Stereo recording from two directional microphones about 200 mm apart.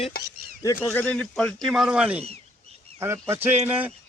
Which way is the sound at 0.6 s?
15° left (ahead or behind).